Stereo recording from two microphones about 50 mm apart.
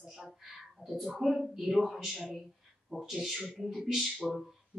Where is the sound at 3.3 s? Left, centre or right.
Centre.